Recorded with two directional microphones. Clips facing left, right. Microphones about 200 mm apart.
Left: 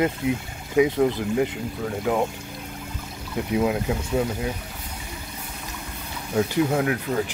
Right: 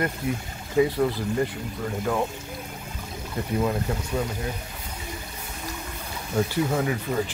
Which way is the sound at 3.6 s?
10° left (ahead or behind).